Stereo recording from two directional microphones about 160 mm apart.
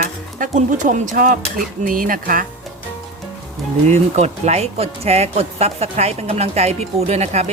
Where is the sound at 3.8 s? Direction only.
45° right (ahead or behind).